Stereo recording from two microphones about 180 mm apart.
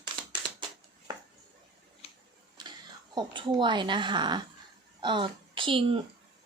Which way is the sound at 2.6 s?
25° right (ahead or behind).